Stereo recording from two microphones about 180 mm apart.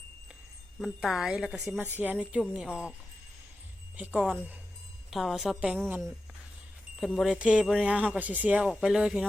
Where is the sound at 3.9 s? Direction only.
10° right (ahead or behind).